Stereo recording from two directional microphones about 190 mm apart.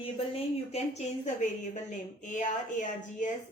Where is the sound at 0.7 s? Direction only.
35° left (ahead or behind).